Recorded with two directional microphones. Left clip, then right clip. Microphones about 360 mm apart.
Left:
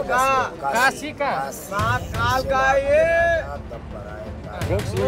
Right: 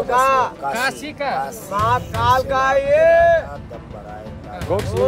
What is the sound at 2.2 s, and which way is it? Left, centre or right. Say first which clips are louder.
Speech: right 3 dB; right.